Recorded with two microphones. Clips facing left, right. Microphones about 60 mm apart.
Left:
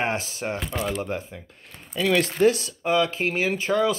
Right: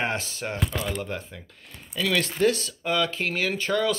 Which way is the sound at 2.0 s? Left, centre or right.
Left.